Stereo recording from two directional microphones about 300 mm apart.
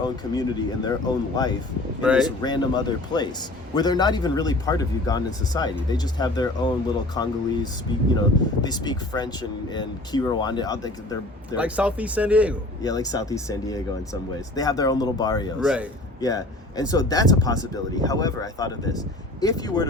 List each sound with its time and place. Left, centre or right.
0.0 s speech: centre
2.0 s speech: centre
2.2 s speech: centre
11.5 s speech: centre
12.8 s speech: centre
15.6 s speech: centre
16.2 s speech: centre